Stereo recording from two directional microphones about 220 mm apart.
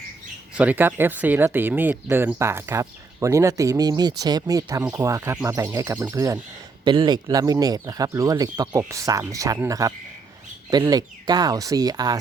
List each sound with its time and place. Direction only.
0.5 s speech: 5° right (ahead or behind)